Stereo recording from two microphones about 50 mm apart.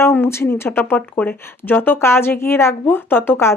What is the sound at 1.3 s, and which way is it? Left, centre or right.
Speech, left.